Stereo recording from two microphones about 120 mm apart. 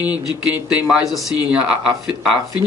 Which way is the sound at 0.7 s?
10° right (ahead or behind).